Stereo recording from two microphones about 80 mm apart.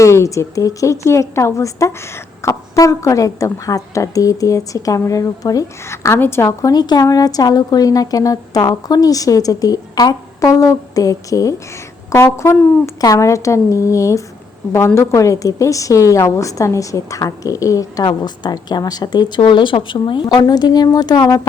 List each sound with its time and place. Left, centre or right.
0.0 s a woman's voice: left
5.9 s a woman's voice: left
6.7 s a woman's voice: left
12.1 s a woman's voice: left
18.0 s a woman's voice: left